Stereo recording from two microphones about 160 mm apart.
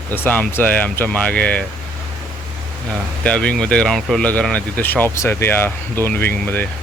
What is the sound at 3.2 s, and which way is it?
Speech, 5° left (ahead or behind).